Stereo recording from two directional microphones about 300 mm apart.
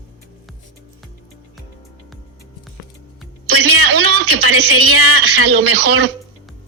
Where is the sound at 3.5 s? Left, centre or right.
Right.